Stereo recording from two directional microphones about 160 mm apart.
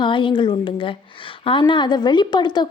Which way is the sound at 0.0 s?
30° left (ahead or behind).